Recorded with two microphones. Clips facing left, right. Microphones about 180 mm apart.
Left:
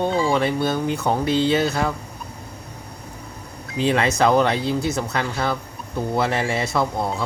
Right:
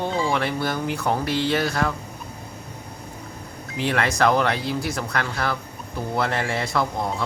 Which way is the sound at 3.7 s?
20° left (ahead or behind).